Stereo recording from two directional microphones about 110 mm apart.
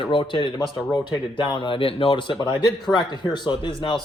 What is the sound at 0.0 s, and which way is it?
Speech, 50° left (ahead or behind).